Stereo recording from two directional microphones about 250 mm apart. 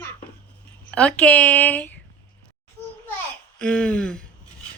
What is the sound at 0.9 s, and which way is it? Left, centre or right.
Speech, centre.